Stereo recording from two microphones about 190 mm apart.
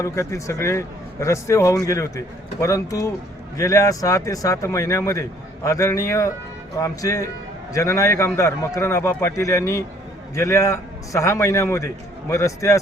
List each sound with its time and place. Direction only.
0.0 s a man's voice: 15° left (ahead or behind)